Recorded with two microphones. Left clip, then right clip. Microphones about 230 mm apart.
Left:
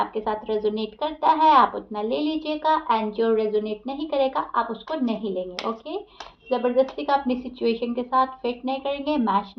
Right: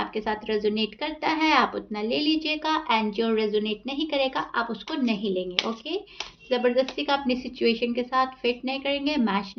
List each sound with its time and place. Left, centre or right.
0.0 s a child's voice: right
6.9 s a child's voice: right